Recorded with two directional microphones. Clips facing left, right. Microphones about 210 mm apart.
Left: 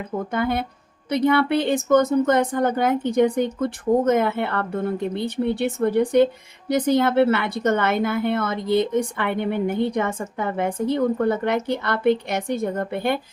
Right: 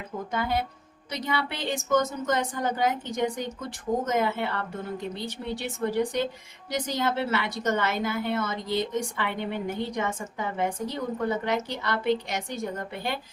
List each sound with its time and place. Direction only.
0.3 s a woman's voice: 55° left (ahead or behind)